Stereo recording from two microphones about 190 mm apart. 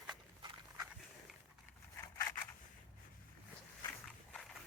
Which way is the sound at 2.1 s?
15° left (ahead or behind).